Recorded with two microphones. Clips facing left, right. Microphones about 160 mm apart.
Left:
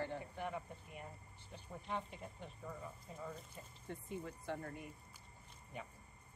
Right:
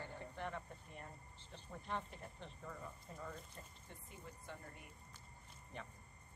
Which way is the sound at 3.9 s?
60° left (ahead or behind).